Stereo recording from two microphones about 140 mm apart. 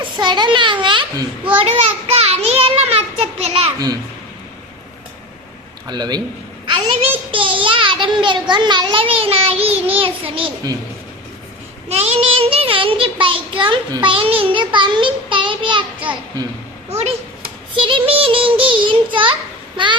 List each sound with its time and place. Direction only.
0.0 s child singing: 35° right (ahead or behind)
1.5 s a child's voice: 45° right (ahead or behind)
5.9 s child singing: 30° right (ahead or behind)
6.7 s a child's voice: 40° right (ahead or behind)
7.3 s child singing: 40° right (ahead or behind)
11.9 s child singing: 45° right (ahead or behind)
17.7 s child singing: 40° right (ahead or behind)